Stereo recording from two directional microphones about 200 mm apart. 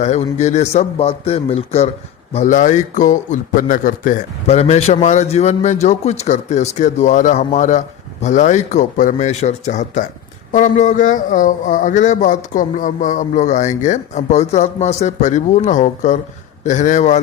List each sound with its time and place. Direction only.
0.0 s a man's voice: 35° left (ahead or behind)